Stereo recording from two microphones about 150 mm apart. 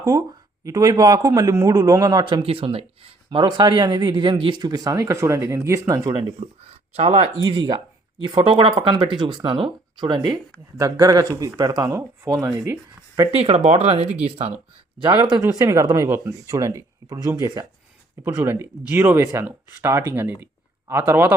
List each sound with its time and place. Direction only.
0.0 s a man's voice: 25° right (ahead or behind)
2.4 s speech: 40° right (ahead or behind); by 12.7 s 15° right (ahead or behind)
13.3 s speech: 40° right (ahead or behind)
15.0 s a man's voice: 30° right (ahead or behind)
18.3 s speech: 15° right (ahead or behind)